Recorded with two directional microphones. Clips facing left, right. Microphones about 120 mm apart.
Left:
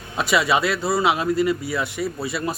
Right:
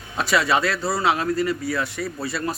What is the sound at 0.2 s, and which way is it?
A man's voice, 20° left (ahead or behind).